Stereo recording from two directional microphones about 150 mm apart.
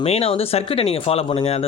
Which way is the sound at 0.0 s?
45° left (ahead or behind).